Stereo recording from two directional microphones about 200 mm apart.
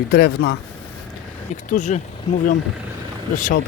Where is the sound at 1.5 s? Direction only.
35° left (ahead or behind).